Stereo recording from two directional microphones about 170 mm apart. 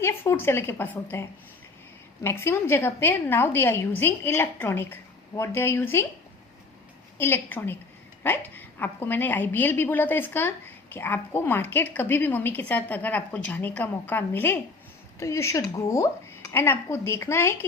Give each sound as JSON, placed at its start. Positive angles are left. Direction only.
{"t": 0.0, "sound": "a woman's voice", "side_deg": 15}
{"t": 7.2, "sound": "a woman's voice", "side_deg": 15}